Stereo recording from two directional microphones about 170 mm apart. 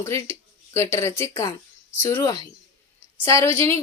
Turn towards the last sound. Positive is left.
turn(degrees=15)  # may be behind; listen again after turning